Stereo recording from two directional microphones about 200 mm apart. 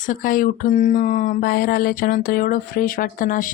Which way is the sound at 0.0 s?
45° left (ahead or behind).